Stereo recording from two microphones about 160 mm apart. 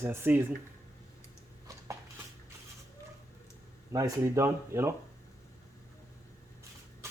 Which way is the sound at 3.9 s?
20° right (ahead or behind).